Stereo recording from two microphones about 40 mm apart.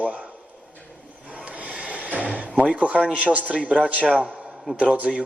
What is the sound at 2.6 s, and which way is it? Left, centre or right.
A man's voice, right.